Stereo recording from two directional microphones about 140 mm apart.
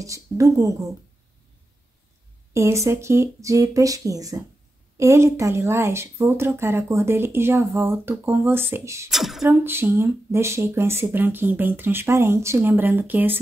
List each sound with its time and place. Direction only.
0.0 s speech: 25° right (ahead or behind)
2.5 s speech: 20° right (ahead or behind)
9.1 s speech: centre (ahead or behind)
9.5 s speech: 15° right (ahead or behind)